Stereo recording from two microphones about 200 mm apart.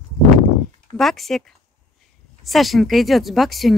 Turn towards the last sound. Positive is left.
turn(degrees=0)  # may be behind; listen again after turning